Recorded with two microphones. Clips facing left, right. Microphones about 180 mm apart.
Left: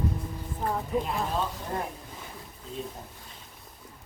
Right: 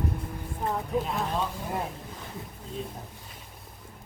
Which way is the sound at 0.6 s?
Centre (ahead or behind).